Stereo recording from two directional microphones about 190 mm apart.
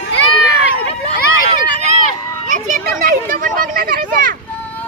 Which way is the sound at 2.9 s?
45° right (ahead or behind).